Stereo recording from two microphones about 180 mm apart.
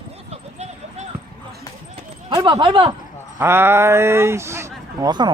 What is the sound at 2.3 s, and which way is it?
Speech, 25° right (ahead or behind).